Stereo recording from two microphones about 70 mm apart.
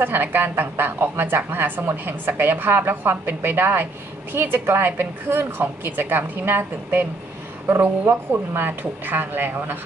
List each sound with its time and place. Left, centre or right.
0.0 s a woman's voice: right